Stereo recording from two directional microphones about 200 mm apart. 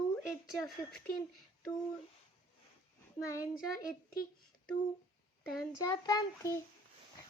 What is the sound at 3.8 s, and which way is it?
Speech, 45° left (ahead or behind).